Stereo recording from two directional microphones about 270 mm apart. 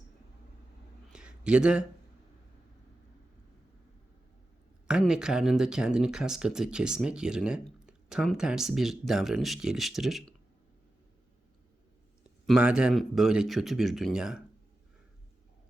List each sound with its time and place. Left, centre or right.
1.1 s a sound: centre
4.9 s speech: centre
12.5 s speech: centre